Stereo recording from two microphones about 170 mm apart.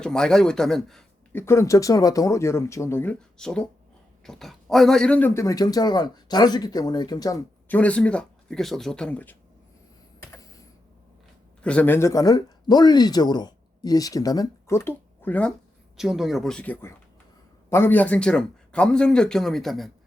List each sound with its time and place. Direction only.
0.0 s speech: 5° left (ahead or behind); by 7.4 s 20° left (ahead or behind)
7.7 s speech: 10° left (ahead or behind)
10.3 s typing: 20° left (ahead or behind)
11.6 s speech: 10° left (ahead or behind)
16.0 s speech: centre (ahead or behind)